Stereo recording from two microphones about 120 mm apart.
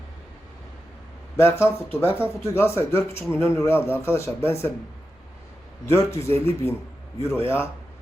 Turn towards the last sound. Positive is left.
turn(degrees=20)  # may be behind; listen again after turning